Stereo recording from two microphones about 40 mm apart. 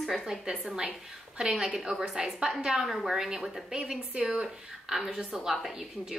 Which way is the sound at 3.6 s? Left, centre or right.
Centre.